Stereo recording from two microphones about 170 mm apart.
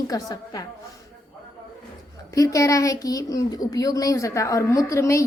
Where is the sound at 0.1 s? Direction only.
25° left (ahead or behind).